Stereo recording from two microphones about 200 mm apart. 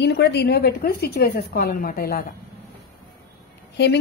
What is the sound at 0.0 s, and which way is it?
A woman's voice, 55° left (ahead or behind).